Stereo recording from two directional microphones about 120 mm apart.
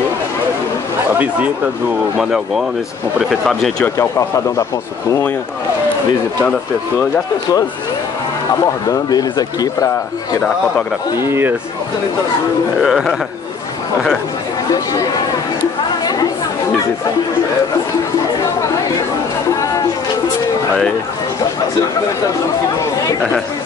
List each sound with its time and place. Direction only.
1.1 s speech: 15° right (ahead or behind)
8.8 s speech: 30° left (ahead or behind)
11.2 s speech: 20° right (ahead or behind)
12.8 s speech: centre (ahead or behind)